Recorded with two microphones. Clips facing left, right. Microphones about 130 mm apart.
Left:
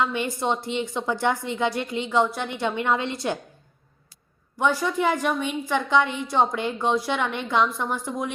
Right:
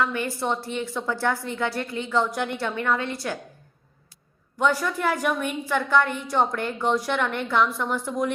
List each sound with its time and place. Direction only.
0.0 s a woman's voice: 20° left (ahead or behind)
4.5 s a woman's voice: 10° left (ahead or behind)